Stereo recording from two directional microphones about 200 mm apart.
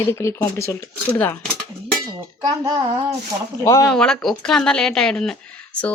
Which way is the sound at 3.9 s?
5° left (ahead or behind).